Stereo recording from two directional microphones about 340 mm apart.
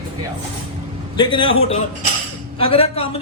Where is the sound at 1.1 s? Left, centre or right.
Centre.